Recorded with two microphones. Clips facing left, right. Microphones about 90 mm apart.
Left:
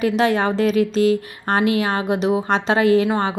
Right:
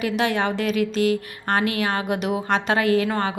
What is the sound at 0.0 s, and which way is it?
A woman's voice, 35° left (ahead or behind).